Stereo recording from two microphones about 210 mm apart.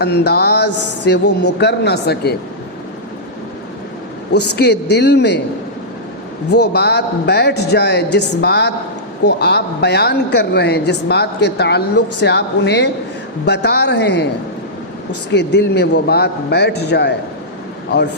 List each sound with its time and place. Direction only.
0.0 s a woman's voice: 50° left (ahead or behind)
4.4 s a woman's voice: 50° left (ahead or behind)
6.5 s a woman's voice: 50° left (ahead or behind)
15.3 s a woman's voice: 55° left (ahead or behind)